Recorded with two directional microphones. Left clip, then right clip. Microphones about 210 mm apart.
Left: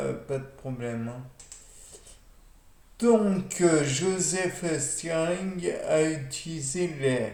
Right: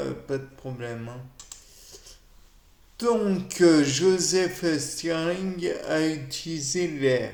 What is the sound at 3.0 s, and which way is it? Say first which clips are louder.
A man's voice: left 1 dB; 50° right (ahead or behind).